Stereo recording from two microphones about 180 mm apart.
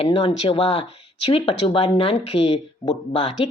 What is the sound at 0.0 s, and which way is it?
Speech, 30° left (ahead or behind).